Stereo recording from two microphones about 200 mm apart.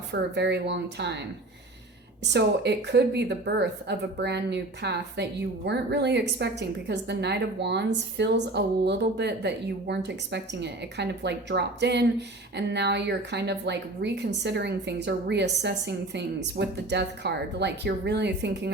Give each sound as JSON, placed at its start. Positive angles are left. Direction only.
{"t": 0.1, "sound": "speech", "side_deg": -60}
{"t": 2.3, "sound": "speech", "side_deg": -60}